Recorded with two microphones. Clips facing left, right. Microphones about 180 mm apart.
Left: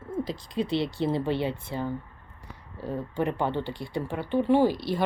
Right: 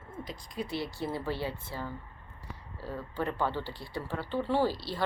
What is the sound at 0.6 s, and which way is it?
Speech, 25° left (ahead or behind).